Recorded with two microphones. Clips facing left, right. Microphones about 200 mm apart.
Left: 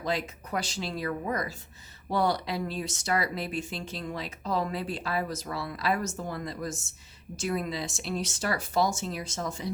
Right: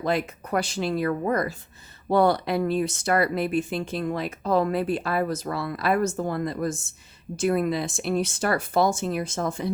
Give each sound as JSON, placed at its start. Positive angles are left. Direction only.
{"t": 0.0, "sound": "speech", "side_deg": -55}